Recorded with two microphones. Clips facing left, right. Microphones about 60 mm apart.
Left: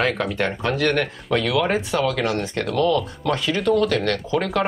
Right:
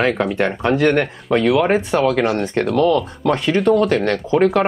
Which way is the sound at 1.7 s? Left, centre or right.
Right.